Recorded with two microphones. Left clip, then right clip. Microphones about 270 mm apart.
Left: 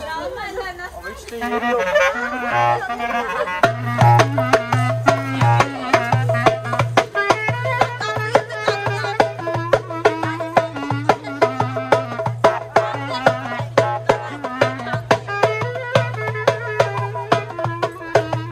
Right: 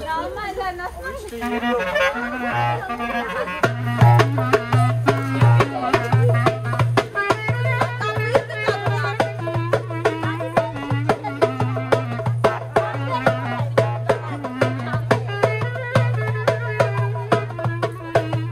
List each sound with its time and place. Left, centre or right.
1.4 s music: left
14.6 s music: left